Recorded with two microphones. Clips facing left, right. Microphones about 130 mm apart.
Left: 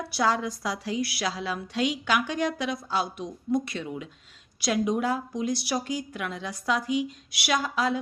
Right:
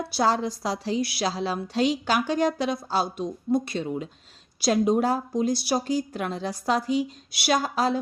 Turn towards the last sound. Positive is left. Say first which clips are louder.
# right 3 dB
turn(degrees=-35)  # may be behind; listen again after turning